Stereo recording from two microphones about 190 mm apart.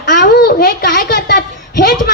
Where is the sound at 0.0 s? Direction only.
55° left (ahead or behind).